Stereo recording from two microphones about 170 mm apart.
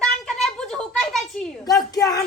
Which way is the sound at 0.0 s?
5° left (ahead or behind).